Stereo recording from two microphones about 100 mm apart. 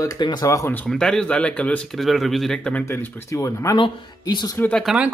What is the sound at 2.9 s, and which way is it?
Speech, 30° left (ahead or behind).